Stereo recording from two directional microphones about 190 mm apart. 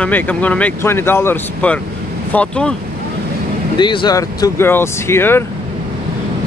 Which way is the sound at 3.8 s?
25° left (ahead or behind).